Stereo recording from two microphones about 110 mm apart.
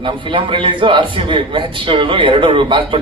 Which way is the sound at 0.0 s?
50° right (ahead or behind).